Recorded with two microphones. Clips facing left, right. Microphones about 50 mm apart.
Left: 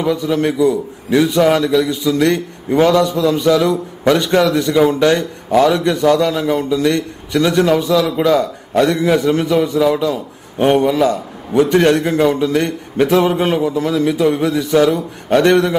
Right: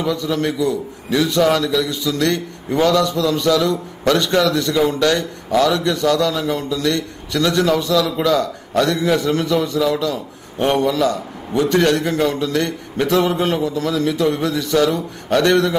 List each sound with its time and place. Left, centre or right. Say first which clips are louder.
0.0 s a man's voice: left 4 dB; centre